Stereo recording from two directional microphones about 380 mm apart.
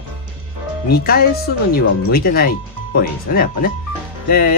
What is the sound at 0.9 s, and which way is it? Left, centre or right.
Speech, left.